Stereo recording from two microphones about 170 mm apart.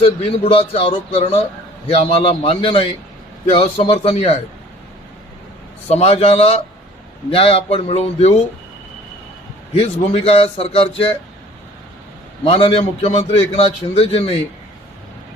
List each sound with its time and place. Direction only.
0.0 s a man's voice: 35° left (ahead or behind)
5.9 s a man's voice: 35° left (ahead or behind)
9.7 s a man's voice: 35° left (ahead or behind)
12.5 s a man's voice: 35° left (ahead or behind)